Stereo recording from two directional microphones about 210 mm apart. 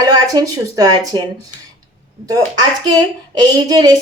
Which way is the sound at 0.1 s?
15° right (ahead or behind).